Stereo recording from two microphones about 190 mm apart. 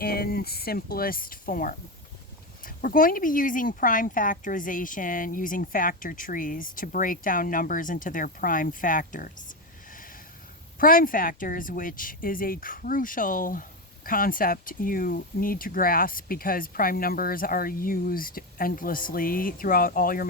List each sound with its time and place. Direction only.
0.0 s speech: 55° left (ahead or behind)
10.8 s speech: 50° left (ahead or behind)